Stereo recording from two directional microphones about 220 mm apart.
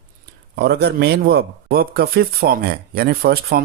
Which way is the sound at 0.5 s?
50° right (ahead or behind).